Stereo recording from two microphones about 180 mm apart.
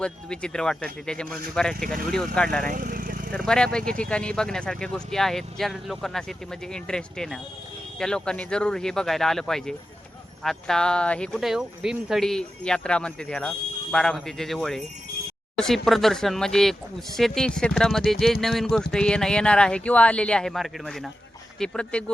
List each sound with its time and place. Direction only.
0.0 s speech: 5° left (ahead or behind)
2.6 s vehicle: 50° right (ahead or behind)
3.3 s speech: 5° left (ahead or behind)